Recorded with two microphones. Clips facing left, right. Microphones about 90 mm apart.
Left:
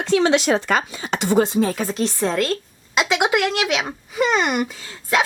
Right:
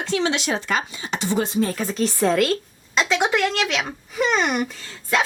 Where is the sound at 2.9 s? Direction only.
10° left (ahead or behind).